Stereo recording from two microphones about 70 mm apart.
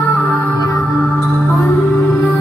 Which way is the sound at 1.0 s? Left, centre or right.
Centre.